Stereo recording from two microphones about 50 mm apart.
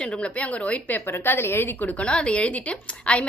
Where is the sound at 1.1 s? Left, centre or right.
Left.